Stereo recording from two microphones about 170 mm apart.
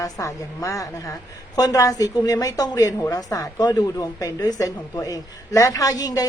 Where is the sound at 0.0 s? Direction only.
20° left (ahead or behind).